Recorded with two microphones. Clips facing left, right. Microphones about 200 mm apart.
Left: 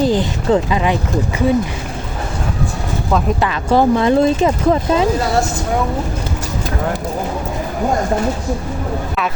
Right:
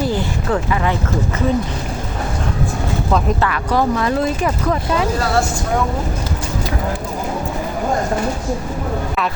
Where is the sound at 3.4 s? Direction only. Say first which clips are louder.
Left 4 dB; 25° left (ahead or behind).